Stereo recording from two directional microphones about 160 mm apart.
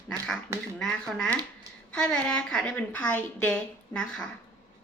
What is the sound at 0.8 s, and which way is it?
A woman's voice, centre (ahead or behind).